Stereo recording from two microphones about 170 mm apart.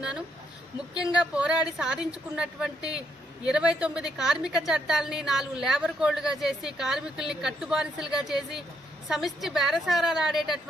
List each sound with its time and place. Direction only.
1.2 s a woman's voice: 5° right (ahead or behind)